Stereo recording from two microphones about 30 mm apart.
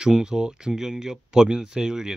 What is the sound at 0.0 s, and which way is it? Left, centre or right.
Speech, right.